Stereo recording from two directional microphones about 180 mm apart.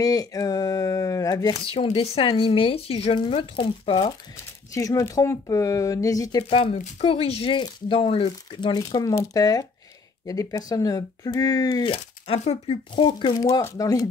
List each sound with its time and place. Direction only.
0.0 s speech: 20° left (ahead or behind)
4.7 s speech: 15° left (ahead or behind)
11.9 s speech: 35° left (ahead or behind)